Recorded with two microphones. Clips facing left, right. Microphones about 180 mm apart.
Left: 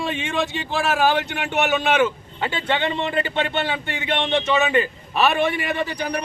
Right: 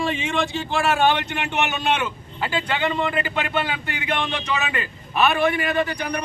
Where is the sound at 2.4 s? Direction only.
25° left (ahead or behind).